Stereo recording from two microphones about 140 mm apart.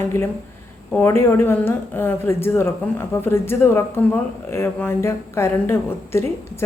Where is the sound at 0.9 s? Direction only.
15° left (ahead or behind).